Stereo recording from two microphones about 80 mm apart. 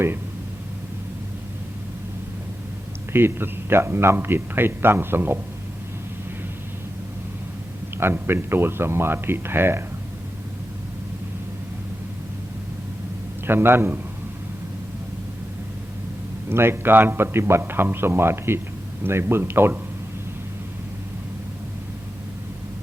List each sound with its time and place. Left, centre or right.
3.1 s a man's voice: right
7.9 s a man's voice: right
13.5 s a man's voice: right
16.5 s a man's voice: right